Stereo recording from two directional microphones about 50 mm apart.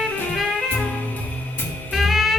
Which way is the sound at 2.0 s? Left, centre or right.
Centre.